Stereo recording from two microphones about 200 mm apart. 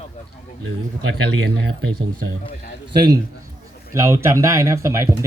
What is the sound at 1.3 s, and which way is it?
Speech, 55° right (ahead or behind).